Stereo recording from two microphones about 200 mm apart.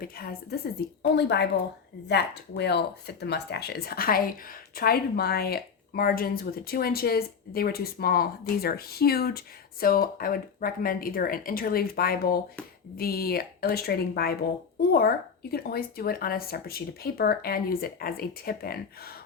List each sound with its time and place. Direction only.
0.0 s speech: 45° left (ahead or behind)